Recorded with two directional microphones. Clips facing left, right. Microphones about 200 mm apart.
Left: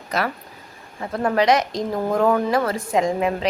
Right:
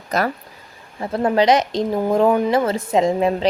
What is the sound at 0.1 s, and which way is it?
Speech, 40° right (ahead or behind).